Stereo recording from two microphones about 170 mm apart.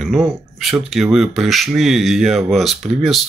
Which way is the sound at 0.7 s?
5° right (ahead or behind).